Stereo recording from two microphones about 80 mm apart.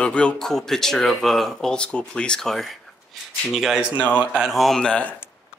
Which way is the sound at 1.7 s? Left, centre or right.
Centre.